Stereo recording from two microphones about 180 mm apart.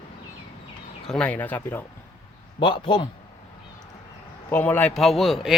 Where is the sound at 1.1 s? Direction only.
5° left (ahead or behind).